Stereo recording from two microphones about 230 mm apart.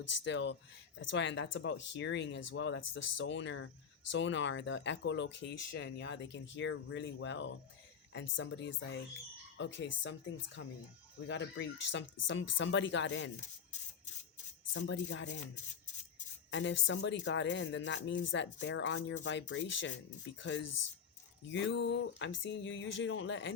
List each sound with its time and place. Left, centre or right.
0.1 s speech: left
14.7 s speech: left
16.5 s speech: left